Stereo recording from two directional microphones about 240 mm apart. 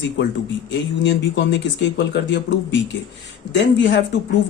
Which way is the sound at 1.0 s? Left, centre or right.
Left.